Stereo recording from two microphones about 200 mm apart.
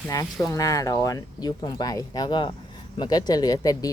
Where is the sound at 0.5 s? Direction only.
15° left (ahead or behind).